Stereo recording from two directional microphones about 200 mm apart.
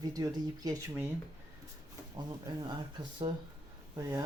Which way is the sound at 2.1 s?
20° right (ahead or behind).